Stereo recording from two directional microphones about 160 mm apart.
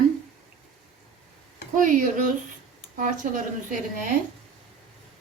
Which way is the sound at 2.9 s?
55° right (ahead or behind).